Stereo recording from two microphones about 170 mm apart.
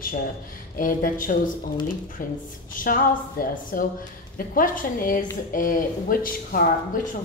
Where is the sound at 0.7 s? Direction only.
55° left (ahead or behind).